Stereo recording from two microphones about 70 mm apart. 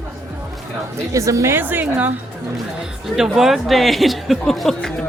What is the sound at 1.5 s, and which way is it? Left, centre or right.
Speech, right.